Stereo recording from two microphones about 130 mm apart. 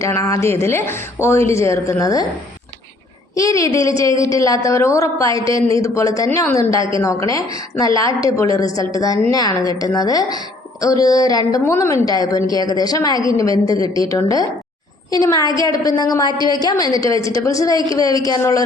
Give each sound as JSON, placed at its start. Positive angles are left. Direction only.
{"t": 0.0, "sound": "a woman's voice", "side_deg": 25}
{"t": 3.3, "sound": "a woman's voice", "side_deg": 25}